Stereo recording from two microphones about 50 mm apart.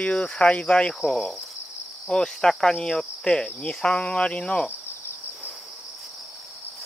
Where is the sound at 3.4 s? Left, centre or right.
Centre.